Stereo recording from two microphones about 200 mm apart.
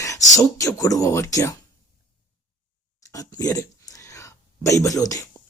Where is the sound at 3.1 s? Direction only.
20° left (ahead or behind).